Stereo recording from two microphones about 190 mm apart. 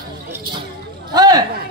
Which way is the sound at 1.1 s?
20° right (ahead or behind).